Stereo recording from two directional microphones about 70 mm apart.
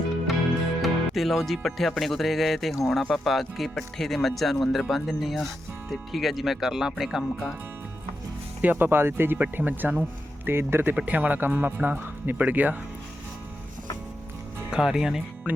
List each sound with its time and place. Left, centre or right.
0.8 s speech: centre
8.6 s speech: right
10.9 s speech: right
14.7 s speech: centre
15.5 s speech: right